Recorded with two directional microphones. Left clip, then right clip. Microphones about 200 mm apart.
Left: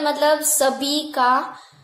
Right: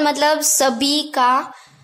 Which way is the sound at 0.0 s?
45° right (ahead or behind).